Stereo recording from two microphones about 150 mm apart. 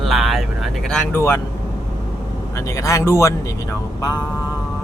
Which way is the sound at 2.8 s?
20° left (ahead or behind).